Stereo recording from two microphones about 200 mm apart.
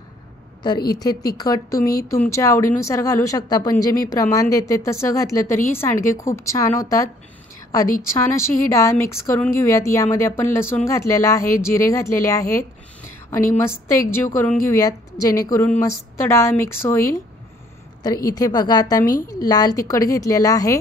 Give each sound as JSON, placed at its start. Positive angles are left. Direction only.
{"t": 0.9, "sound": "a woman's voice", "side_deg": 20}
{"t": 8.1, "sound": "a woman's voice", "side_deg": 15}